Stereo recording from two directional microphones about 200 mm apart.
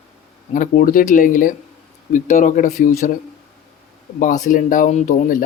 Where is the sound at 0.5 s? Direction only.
40° left (ahead or behind).